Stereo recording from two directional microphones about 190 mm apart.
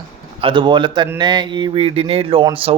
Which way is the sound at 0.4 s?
25° right (ahead or behind).